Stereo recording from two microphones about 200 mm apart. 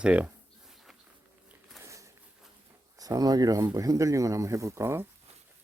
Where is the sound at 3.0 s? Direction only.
20° right (ahead or behind).